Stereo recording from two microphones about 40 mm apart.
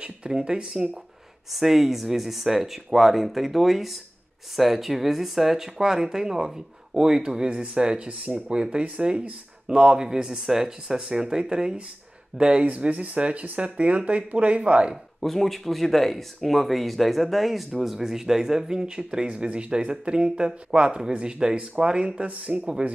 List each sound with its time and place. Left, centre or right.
0.0 s speech: right
1.5 s speech: centre; by 8.1 s right
8.1 s speech: right
8.5 s speech: right
12.6 s speech: right
15.1 s speech: centre
19.2 s speech: right